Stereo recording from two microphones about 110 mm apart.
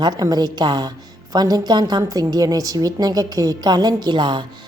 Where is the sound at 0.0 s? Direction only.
35° right (ahead or behind).